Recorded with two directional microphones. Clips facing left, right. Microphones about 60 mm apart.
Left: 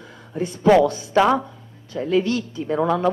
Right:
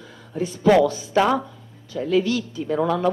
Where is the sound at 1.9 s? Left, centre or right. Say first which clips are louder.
Even; left.